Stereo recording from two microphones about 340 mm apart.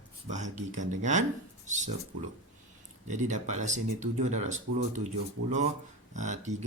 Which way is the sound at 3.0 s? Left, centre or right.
Right.